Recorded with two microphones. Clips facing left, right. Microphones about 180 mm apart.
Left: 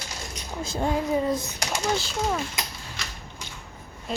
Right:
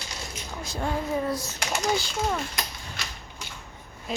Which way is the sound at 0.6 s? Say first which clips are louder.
Left 4 dB; 20° left (ahead or behind).